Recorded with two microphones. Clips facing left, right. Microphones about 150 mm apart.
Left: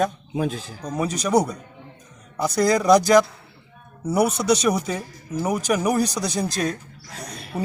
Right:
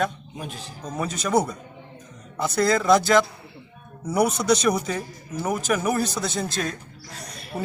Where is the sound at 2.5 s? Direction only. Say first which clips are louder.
Left 2 dB; 15° left (ahead or behind).